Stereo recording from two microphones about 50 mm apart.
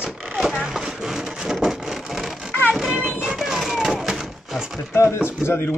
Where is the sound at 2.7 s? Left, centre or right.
Centre.